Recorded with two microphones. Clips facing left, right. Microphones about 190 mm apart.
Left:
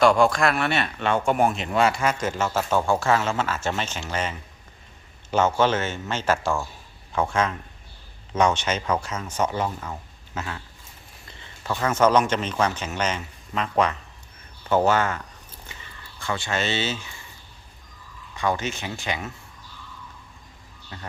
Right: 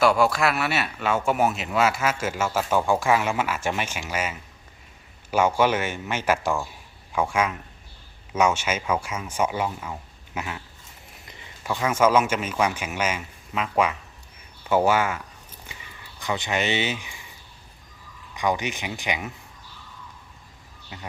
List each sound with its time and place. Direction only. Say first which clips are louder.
0.0 s speech: left 2 dB; 5° right (ahead or behind)
15.6 s a sound: even; 15° right (ahead or behind)
18.3 s speech: even; 15° right (ahead or behind)
20.9 s speech: even; 15° right (ahead or behind)